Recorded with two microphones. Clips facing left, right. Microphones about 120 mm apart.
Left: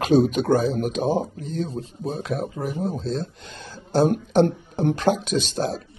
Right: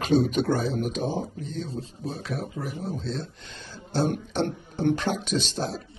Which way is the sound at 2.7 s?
40° left (ahead or behind).